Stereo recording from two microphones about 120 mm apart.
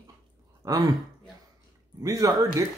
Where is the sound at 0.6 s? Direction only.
30° right (ahead or behind).